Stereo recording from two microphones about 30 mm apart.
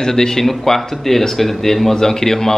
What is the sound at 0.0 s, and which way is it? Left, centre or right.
Speech, left.